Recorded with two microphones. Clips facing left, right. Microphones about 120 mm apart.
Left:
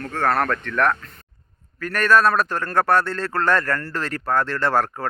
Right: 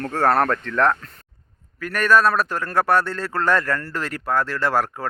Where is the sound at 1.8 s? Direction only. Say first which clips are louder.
Even; 10° right (ahead or behind).